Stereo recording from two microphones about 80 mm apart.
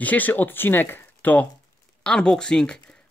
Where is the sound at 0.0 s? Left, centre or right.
Left.